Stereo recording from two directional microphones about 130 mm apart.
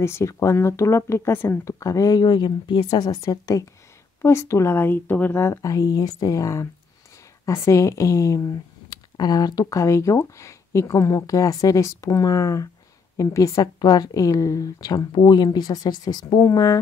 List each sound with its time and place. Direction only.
0.0 s speech: 20° left (ahead or behind)